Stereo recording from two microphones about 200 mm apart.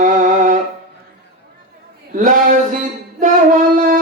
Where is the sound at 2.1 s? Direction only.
40° right (ahead or behind).